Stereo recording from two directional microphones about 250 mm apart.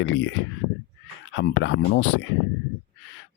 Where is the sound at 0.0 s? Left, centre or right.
Left.